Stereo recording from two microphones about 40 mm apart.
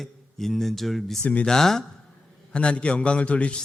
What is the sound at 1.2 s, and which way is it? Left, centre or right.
Speech, left.